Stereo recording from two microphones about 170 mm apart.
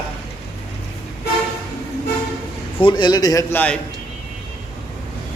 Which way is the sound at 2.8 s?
25° left (ahead or behind).